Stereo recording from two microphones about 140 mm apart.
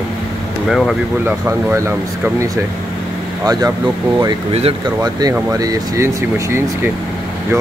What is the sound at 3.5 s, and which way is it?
Speech, 25° right (ahead or behind).